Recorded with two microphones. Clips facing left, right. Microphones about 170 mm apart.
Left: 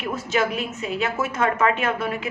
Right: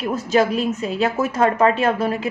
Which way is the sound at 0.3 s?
35° right (ahead or behind).